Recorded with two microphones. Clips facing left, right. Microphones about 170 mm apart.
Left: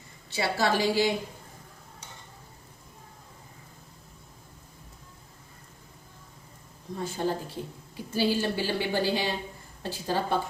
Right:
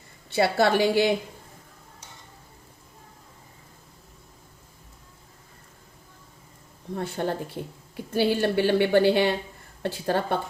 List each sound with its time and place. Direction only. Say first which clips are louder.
0.3 s a woman's voice: right 6 dB; 60° right (ahead or behind)
6.9 s a woman's voice: right 2 dB; 60° right (ahead or behind)